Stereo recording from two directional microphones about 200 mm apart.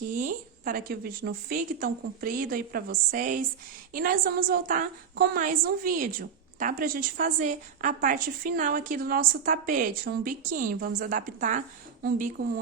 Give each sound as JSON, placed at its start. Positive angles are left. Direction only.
{"t": 0.1, "sound": "a woman's voice", "side_deg": -40}